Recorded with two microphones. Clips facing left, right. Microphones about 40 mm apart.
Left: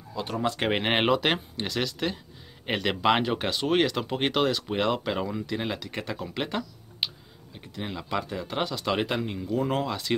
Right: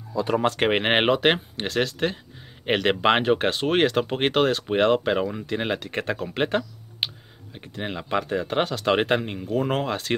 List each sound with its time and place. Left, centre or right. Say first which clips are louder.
0.6 s speech: right 1 dB; right
1.2 s speech: right 5 dB; right